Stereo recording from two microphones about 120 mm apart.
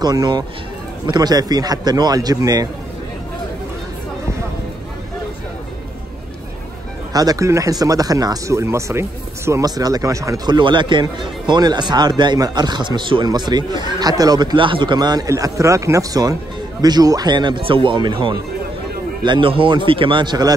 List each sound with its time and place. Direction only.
0.0 s speech: 35° right (ahead or behind)
7.1 s speech: 30° right (ahead or behind)